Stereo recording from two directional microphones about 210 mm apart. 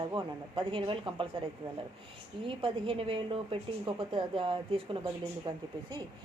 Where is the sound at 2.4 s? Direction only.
25° right (ahead or behind).